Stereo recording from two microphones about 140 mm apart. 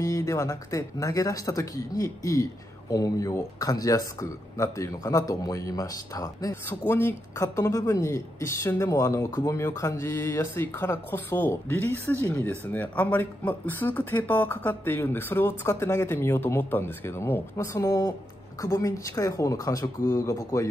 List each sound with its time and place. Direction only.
0.0 s speech: 20° left (ahead or behind)